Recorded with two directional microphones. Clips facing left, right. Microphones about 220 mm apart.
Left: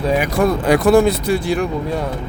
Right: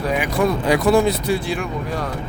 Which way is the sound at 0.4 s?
50° left (ahead or behind).